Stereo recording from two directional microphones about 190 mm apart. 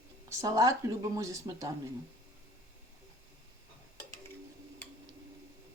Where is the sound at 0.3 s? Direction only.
15° right (ahead or behind).